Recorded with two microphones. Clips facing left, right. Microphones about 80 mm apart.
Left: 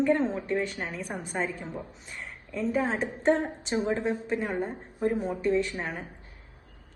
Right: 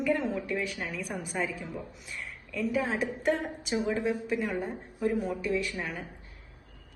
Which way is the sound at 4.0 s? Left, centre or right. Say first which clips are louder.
Even; left.